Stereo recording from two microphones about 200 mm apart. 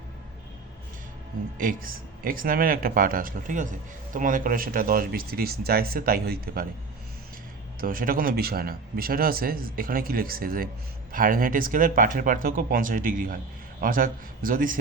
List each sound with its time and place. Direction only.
1.5 s speech: 45° right (ahead or behind)
7.8 s speech: 45° right (ahead or behind)